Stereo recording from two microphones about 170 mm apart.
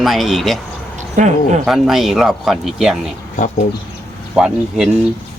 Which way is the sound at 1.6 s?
Centre (ahead or behind).